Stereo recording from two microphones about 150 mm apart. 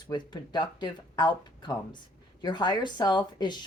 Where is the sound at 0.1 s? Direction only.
30° left (ahead or behind).